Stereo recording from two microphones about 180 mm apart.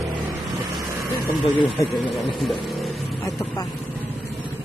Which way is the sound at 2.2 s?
Centre (ahead or behind).